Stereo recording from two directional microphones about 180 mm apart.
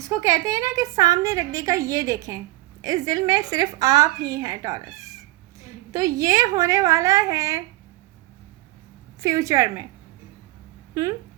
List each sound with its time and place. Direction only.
0.0 s a woman's voice: 20° right (ahead or behind)
9.2 s a woman's voice: 15° right (ahead or behind)